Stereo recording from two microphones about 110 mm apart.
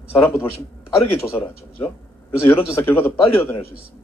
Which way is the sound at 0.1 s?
20° left (ahead or behind).